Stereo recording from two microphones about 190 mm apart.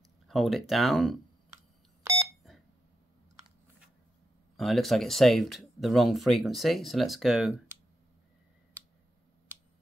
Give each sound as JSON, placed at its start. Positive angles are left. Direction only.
{"t": 0.3, "sound": "speech", "side_deg": 0}
{"t": 2.0, "sound": "beep", "side_deg": -15}
{"t": 4.6, "sound": "speech", "side_deg": 0}